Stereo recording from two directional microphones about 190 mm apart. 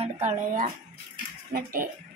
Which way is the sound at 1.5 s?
50° right (ahead or behind).